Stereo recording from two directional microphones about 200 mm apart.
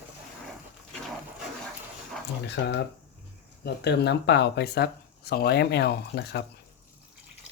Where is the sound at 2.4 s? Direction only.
60° left (ahead or behind).